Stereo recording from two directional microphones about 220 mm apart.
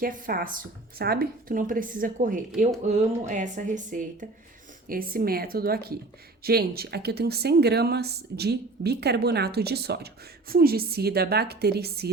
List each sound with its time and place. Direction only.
0.0 s a woman's voice: 40° right (ahead or behind)